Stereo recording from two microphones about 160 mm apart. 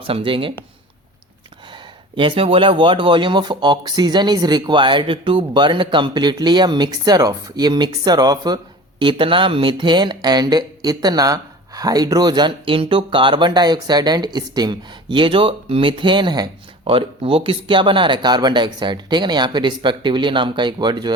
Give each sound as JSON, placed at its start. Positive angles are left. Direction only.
{"t": 0.1, "sound": "speech", "side_deg": -35}
{"t": 2.1, "sound": "speech", "side_deg": -30}